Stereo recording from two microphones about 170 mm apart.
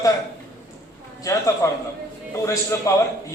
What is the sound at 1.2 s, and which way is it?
A man's voice, 20° left (ahead or behind).